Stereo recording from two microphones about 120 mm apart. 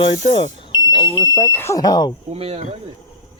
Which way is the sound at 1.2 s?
25° left (ahead or behind).